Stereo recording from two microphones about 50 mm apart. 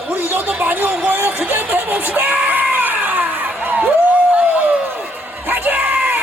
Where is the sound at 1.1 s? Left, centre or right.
Right.